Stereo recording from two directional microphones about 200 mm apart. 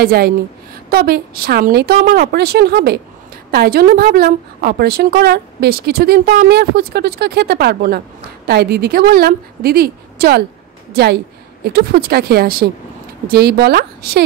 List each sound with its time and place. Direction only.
0.0 s a woman's voice: 50° right (ahead or behind)